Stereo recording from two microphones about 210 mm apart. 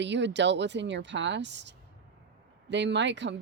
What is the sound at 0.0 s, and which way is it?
Speech, 55° right (ahead or behind).